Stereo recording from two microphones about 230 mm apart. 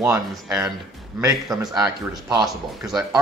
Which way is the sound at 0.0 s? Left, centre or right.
Centre.